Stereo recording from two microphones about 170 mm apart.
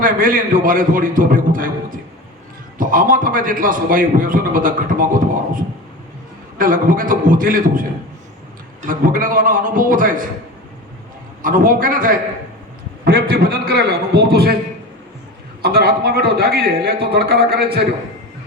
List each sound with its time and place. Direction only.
0.0 s a man's voice: 55° right (ahead or behind)
6.6 s a man's voice: 55° right (ahead or behind)
8.9 s a man's voice: 55° right (ahead or behind)
11.4 s a man's voice: 55° right (ahead or behind)
15.6 s a man's voice: 65° right (ahead or behind)